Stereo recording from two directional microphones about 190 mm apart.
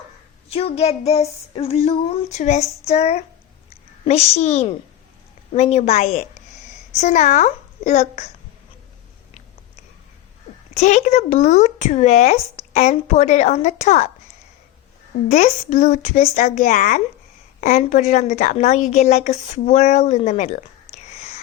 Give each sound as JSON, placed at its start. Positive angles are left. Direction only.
{"t": 0.4, "sound": "a woman's voice", "side_deg": 30}
{"t": 10.8, "sound": "a woman's voice", "side_deg": 35}
{"t": 15.3, "sound": "a woman's voice", "side_deg": 35}